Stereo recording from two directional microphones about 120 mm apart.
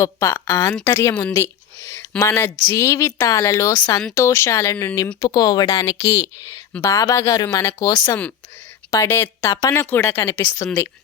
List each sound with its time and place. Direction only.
0.0 s a woman's voice: 25° left (ahead or behind)